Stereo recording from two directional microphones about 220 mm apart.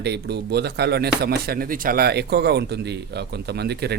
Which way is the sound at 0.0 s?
50° right (ahead or behind).